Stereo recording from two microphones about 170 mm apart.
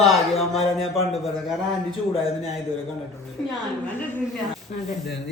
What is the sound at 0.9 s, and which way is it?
Speech, 35° left (ahead or behind).